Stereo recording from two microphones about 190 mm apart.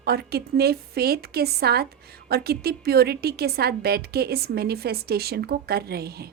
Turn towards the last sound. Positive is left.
turn(degrees=-55)  # may be behind; listen again after turning